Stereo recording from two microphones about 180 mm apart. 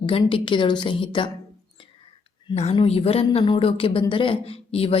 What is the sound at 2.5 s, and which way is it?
A woman's voice, 35° left (ahead or behind).